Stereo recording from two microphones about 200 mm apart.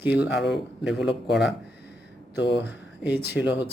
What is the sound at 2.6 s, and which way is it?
Speech, 10° right (ahead or behind).